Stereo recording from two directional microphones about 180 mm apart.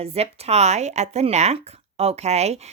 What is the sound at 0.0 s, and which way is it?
Speech, 35° right (ahead or behind).